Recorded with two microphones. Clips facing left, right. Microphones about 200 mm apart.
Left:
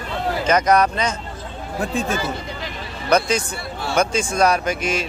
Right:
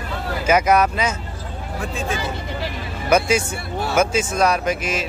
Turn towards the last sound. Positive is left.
turn(degrees=0)  # may be behind; listen again after turning